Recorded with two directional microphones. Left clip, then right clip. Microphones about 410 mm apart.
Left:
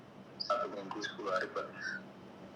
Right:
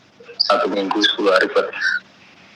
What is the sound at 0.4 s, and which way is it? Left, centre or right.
Speech, right.